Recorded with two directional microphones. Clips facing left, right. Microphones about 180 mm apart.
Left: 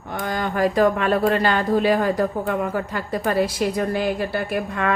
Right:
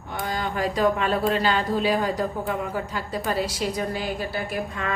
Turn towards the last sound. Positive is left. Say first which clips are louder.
# left 5 dB
turn(degrees=60)  # may be behind; listen again after turning